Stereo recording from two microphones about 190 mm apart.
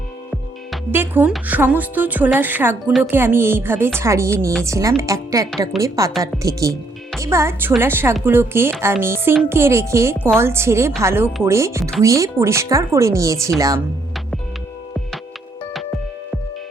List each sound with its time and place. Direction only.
0.9 s a woman's voice: 10° right (ahead or behind)
5.7 s a woman's voice: centre (ahead or behind)
6.4 s a woman's voice: 15° right (ahead or behind)